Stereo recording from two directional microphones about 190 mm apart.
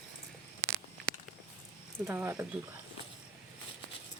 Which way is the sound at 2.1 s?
10° right (ahead or behind).